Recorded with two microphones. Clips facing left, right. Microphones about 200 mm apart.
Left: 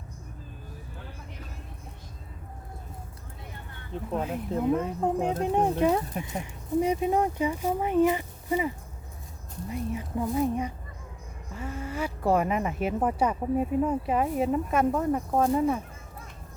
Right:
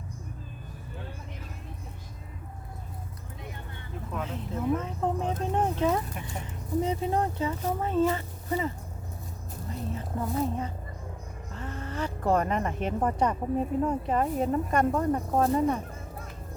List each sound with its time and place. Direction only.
3.9 s speech: 30° left (ahead or behind)
4.8 s speech: 15° left (ahead or behind)